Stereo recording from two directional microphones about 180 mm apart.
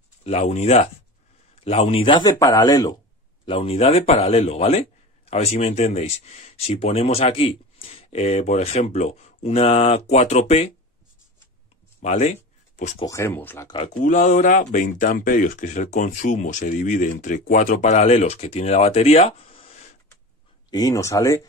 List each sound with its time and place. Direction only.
0.2 s a man's voice: 35° left (ahead or behind); by 2.9 s 20° left (ahead or behind)
3.4 s a man's voice: 30° left (ahead or behind)
12.0 s speech: 40° left (ahead or behind)
13.0 s speech: 15° left (ahead or behind)
14.0 s speech: 45° left (ahead or behind)
20.7 s speech: 20° left (ahead or behind)